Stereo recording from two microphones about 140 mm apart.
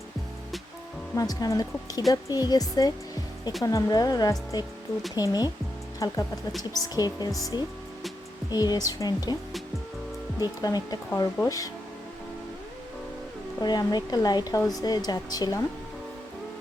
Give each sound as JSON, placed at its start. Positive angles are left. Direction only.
{"t": 1.1, "sound": "speech", "side_deg": 25}
{"t": 8.4, "sound": "speech", "side_deg": 30}
{"t": 10.4, "sound": "speech", "side_deg": 30}
{"t": 13.6, "sound": "speech", "side_deg": 30}